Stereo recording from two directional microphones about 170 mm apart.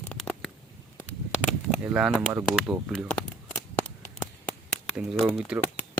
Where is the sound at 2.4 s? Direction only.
15° right (ahead or behind).